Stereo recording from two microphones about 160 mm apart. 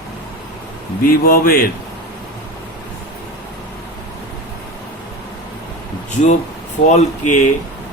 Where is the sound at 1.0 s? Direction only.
65° left (ahead or behind).